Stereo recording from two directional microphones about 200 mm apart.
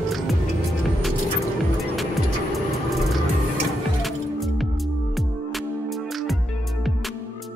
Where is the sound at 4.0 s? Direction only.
Centre (ahead or behind).